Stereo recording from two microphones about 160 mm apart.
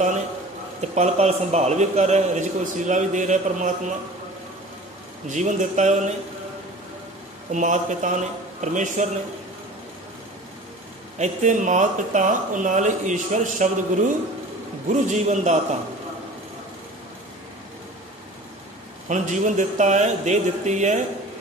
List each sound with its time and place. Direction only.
0.7 s a man's voice: 45° right (ahead or behind)
5.3 s a man's voice: 50° right (ahead or behind)
7.5 s a man's voice: 50° right (ahead or behind)
11.1 s a man's voice: 50° right (ahead or behind)
19.0 s a man's voice: 50° right (ahead or behind)